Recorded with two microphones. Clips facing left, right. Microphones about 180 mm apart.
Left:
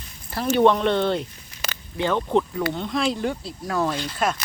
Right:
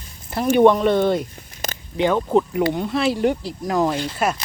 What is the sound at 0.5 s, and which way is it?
Speech, 10° right (ahead or behind).